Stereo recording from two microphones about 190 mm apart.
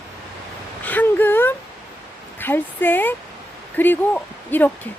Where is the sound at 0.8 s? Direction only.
10° left (ahead or behind).